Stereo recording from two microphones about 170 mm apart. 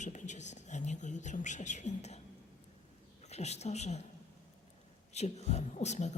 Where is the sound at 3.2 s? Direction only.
40° left (ahead or behind).